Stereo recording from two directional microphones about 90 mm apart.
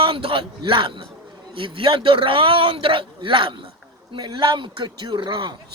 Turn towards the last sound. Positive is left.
turn(degrees=-60)  # may be behind; listen again after turning